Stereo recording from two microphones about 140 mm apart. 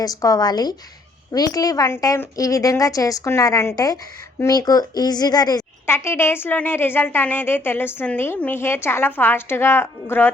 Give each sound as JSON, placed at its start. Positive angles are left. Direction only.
{"t": 0.0, "sound": "a woman's voice", "side_deg": 25}
{"t": 5.8, "sound": "speech", "side_deg": 15}